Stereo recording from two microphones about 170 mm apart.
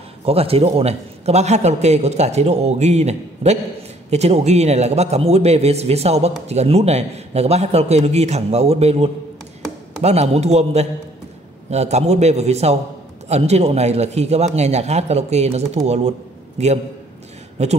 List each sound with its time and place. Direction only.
0.2 s a man's voice: 35° right (ahead or behind)